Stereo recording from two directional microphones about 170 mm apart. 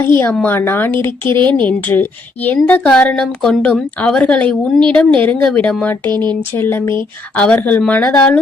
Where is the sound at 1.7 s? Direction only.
10° left (ahead or behind).